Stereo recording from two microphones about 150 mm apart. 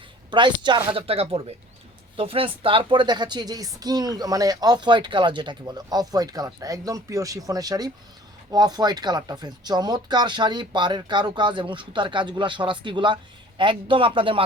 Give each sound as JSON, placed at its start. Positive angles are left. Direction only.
{"t": 0.3, "sound": "a woman's voice", "side_deg": -30}